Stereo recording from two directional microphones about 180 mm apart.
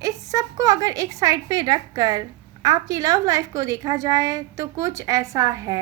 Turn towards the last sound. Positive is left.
turn(degrees=-20)  # may be behind; listen again after turning